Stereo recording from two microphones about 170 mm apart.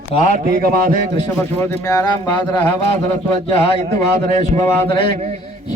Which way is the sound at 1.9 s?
25° left (ahead or behind).